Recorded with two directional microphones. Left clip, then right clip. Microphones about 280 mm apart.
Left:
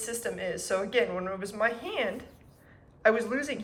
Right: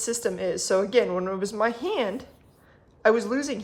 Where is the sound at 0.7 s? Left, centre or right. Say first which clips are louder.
Right 5 dB; centre.